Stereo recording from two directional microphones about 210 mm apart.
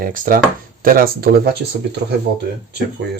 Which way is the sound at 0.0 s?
40° right (ahead or behind).